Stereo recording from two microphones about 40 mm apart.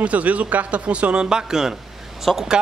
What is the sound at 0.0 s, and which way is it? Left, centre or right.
A man's voice, right.